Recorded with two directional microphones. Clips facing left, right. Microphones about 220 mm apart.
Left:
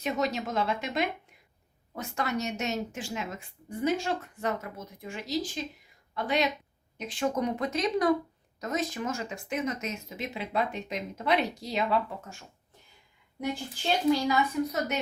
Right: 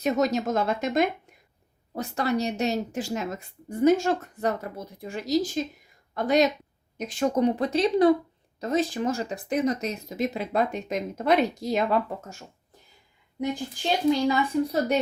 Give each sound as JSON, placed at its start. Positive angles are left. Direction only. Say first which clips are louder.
{"t": 0.0, "sound": "speech", "louder": "right 6 dB", "side_deg": -45}
{"t": 14.1, "sound": "a woman's voice", "louder": "right 3 dB", "side_deg": -30}